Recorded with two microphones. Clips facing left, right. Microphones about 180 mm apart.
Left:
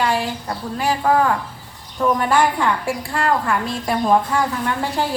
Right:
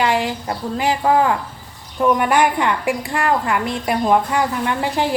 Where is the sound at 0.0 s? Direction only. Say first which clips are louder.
Right 2 dB; 20° right (ahead or behind).